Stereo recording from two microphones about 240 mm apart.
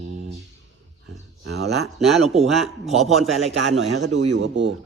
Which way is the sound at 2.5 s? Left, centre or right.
Centre.